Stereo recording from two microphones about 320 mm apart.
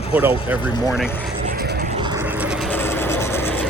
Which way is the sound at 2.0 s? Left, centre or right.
Centre.